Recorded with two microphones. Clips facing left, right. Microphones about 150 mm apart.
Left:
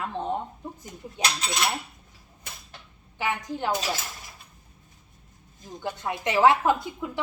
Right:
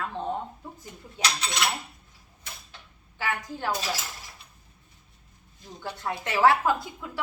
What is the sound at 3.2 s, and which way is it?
Speech, 20° left (ahead or behind).